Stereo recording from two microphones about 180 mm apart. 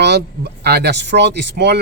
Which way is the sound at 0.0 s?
65° right (ahead or behind).